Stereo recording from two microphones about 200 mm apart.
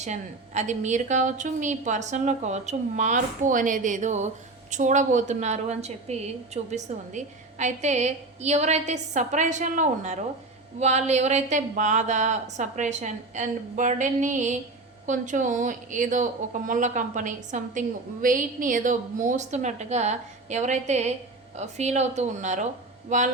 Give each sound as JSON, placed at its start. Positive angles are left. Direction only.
{"t": 0.0, "sound": "a woman's voice", "side_deg": -35}